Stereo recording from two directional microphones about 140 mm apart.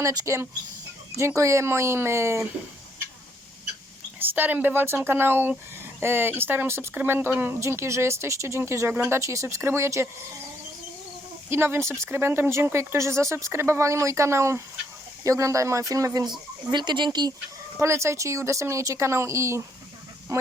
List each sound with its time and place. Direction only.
0.0 s speech: 25° right (ahead or behind)
4.4 s speech: 15° right (ahead or behind)
11.4 s speech: 15° right (ahead or behind)